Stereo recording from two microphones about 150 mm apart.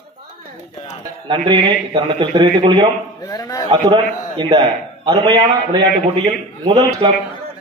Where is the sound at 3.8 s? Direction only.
30° right (ahead or behind).